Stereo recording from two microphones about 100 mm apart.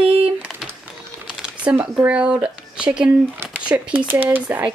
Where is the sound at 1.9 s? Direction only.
15° right (ahead or behind).